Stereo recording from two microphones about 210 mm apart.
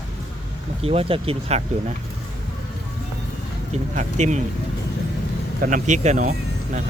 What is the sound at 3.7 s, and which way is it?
Speech, 35° right (ahead or behind).